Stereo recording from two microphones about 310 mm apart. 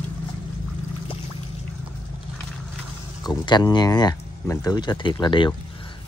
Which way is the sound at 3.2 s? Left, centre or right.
Centre.